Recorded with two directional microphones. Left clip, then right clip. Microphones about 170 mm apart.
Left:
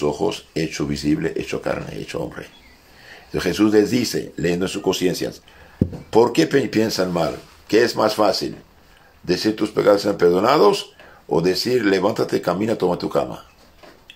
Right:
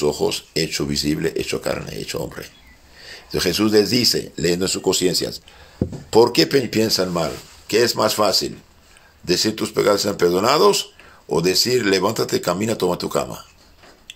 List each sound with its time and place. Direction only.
0.0 s speech: 30° right (ahead or behind)